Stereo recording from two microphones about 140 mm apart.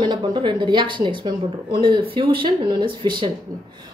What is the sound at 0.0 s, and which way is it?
A woman's voice, 35° right (ahead or behind).